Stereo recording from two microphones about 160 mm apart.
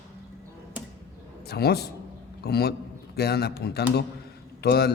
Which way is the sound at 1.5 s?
85° left.